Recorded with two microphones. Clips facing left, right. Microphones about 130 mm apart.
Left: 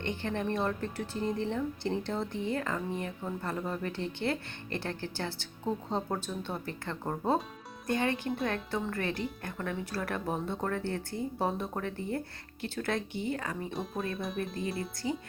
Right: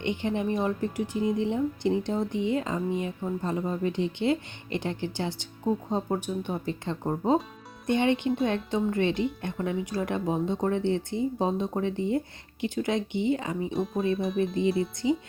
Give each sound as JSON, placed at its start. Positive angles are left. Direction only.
{"t": 0.0, "sound": "speech", "side_deg": -15}
{"t": 13.7, "sound": "speech", "side_deg": 0}
{"t": 15.0, "sound": "speech", "side_deg": -15}